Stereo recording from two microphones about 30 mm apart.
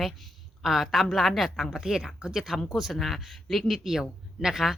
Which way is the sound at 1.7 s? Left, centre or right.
Centre.